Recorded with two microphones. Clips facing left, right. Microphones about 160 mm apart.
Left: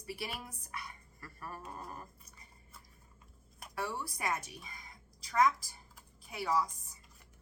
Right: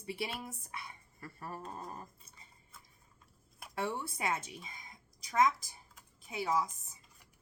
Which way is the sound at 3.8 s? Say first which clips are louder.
Right 2 dB; 25° right (ahead or behind).